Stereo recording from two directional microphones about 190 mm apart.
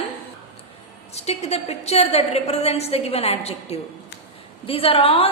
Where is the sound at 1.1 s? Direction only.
35° left (ahead or behind).